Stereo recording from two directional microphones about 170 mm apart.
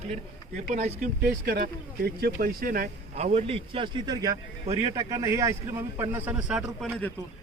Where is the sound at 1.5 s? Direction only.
65° right (ahead or behind).